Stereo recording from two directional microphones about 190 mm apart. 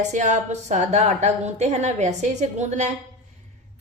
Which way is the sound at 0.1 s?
40° right (ahead or behind).